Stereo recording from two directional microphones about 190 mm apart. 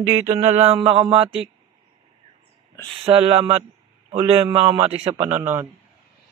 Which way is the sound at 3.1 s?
30° right (ahead or behind).